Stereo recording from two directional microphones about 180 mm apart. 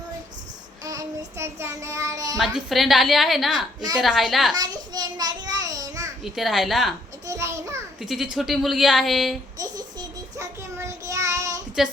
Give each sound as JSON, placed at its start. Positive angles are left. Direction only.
{"t": 0.9, "sound": "child singing", "side_deg": -15}
{"t": 2.4, "sound": "a woman's voice", "side_deg": 0}
{"t": 4.5, "sound": "a sound", "side_deg": -20}
{"t": 6.2, "sound": "a woman's voice", "side_deg": 0}
{"t": 7.3, "sound": "a sound", "side_deg": -15}
{"t": 8.0, "sound": "a woman's voice", "side_deg": 0}
{"t": 9.6, "sound": "child singing", "side_deg": -20}